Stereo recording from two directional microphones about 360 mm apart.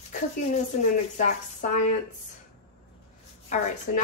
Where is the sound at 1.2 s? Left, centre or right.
Left.